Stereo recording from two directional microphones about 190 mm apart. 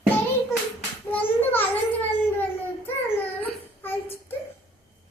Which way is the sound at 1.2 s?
10° left (ahead or behind).